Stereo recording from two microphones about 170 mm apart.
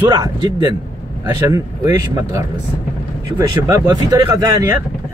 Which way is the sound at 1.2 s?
20° right (ahead or behind).